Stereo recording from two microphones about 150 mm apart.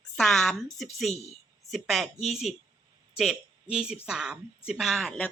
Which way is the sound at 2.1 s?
45° left (ahead or behind).